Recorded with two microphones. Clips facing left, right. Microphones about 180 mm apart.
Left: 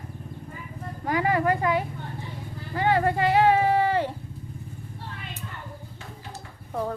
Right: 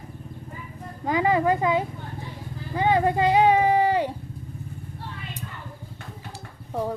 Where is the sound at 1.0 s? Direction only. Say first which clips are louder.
Right 2 dB; 20° right (ahead or behind).